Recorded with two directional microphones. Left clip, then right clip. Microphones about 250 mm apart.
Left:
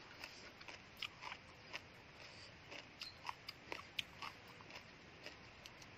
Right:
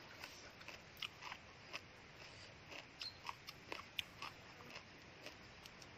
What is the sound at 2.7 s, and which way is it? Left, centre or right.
Dog, centre.